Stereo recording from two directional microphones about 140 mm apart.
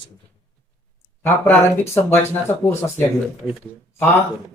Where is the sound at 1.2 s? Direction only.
15° left (ahead or behind).